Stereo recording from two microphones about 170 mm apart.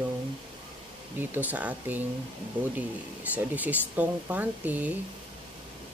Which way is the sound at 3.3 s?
10° right (ahead or behind).